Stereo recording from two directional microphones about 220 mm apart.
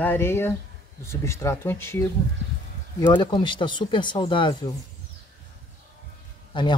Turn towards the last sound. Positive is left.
turn(degrees=20)  # may be behind; listen again after turning